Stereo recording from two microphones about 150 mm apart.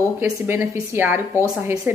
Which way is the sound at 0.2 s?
15° right (ahead or behind).